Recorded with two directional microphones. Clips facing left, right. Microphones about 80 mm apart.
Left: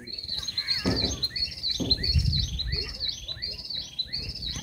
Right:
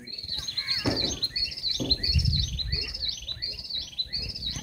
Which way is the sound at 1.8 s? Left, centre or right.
Left.